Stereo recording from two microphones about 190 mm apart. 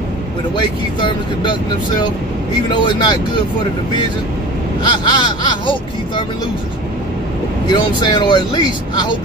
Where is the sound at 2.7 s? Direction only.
25° left (ahead or behind).